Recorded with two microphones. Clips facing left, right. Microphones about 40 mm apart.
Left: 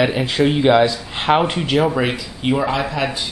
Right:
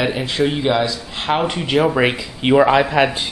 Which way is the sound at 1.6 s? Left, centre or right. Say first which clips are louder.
Right 1 dB; centre.